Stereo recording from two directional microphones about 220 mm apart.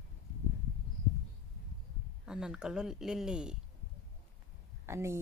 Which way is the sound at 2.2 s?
5° right (ahead or behind).